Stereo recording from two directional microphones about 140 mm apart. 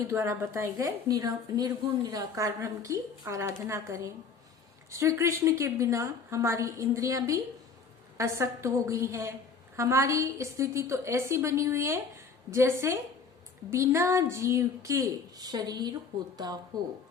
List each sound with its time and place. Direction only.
0.1 s a woman's voice: 20° right (ahead or behind)